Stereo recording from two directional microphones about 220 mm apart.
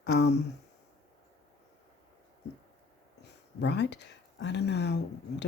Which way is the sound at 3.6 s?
50° left (ahead or behind).